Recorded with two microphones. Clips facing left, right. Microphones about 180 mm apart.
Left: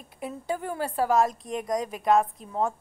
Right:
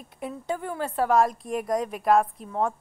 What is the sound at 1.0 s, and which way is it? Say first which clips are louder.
A woman's voice: right 2 dB; centre (ahead or behind).